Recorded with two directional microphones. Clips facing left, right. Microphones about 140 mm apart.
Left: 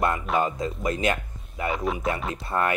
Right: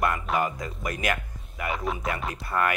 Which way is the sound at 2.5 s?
25° left (ahead or behind).